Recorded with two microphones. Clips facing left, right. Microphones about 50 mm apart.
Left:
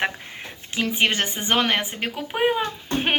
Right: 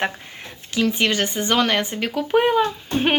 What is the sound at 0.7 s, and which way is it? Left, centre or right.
A woman's voice, left.